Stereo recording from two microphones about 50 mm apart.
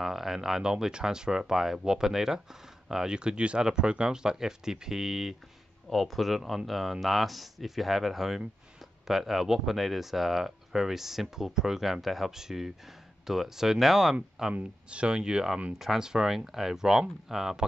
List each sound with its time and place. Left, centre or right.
0.0 s speech: centre
14.5 s speech: right; by 17.6 s centre